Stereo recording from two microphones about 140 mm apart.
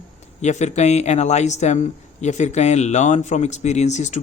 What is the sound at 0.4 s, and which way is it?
Speech, 55° left (ahead or behind).